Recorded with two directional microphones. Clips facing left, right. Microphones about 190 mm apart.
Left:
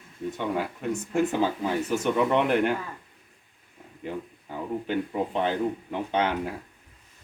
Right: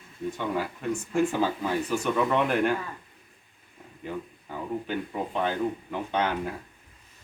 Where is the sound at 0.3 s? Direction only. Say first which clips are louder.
Left 1 dB; 20° left (ahead or behind).